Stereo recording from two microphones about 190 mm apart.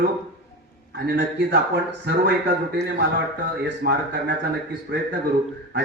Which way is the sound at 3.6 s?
60° right (ahead or behind).